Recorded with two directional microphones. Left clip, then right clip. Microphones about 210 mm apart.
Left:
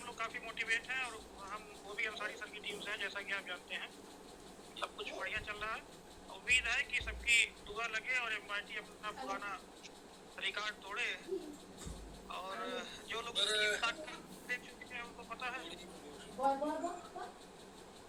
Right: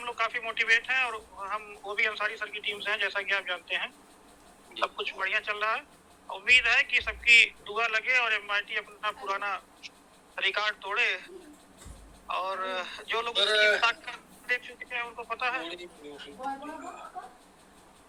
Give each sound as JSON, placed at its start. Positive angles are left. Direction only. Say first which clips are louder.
{"t": 0.0, "sound": "a man's voice", "louder": "right 12 dB", "side_deg": -45}
{"t": 12.3, "sound": "a man's voice", "louder": "right 12 dB", "side_deg": -50}